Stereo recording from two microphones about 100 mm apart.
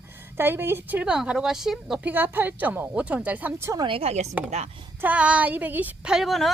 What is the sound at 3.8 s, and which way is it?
Speech, 75° right (ahead or behind).